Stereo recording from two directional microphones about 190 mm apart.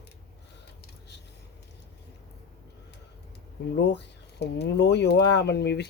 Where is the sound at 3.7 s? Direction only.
60° left (ahead or behind).